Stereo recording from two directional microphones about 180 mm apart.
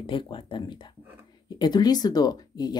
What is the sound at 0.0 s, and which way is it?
Speech, 25° left (ahead or behind).